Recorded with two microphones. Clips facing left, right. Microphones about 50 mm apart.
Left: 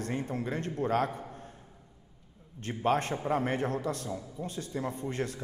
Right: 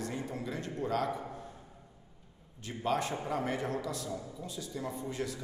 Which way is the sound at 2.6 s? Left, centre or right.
Left.